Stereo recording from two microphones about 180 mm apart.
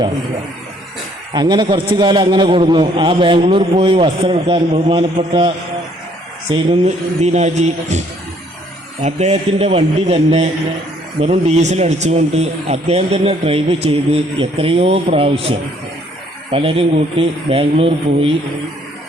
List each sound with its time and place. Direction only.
1.3 s a man's voice: 25° right (ahead or behind)
6.5 s speech: 35° right (ahead or behind)